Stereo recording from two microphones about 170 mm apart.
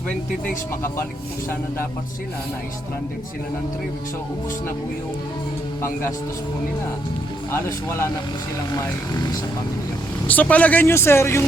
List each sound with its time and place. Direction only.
0.4 s speech: 15° left (ahead or behind)
5.8 s speech: 15° left (ahead or behind)
7.5 s speech: 15° left (ahead or behind)
10.2 s speech: 10° left (ahead or behind)